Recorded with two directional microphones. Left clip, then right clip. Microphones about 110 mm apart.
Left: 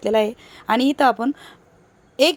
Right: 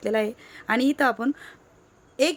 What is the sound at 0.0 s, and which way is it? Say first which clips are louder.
Speech: left 6 dB; 20° left (ahead or behind).